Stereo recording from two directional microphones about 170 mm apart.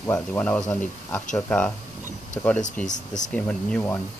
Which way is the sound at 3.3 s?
5° left (ahead or behind).